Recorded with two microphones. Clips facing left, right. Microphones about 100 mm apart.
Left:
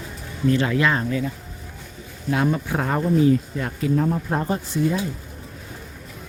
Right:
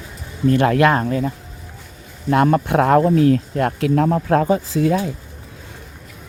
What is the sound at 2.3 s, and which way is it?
Speech, 65° right (ahead or behind).